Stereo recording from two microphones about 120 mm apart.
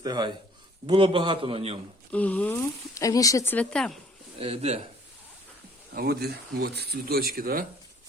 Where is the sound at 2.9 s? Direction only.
30° left (ahead or behind).